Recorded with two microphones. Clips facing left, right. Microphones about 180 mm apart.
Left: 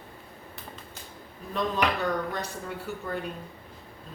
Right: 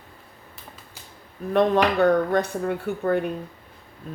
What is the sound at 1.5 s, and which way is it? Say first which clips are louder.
Speech: right 8 dB; 60° right (ahead or behind).